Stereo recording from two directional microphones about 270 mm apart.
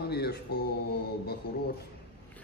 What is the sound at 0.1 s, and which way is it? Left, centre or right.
Speech, left.